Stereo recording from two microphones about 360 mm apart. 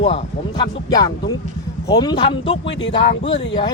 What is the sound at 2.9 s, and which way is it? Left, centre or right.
Speech, centre.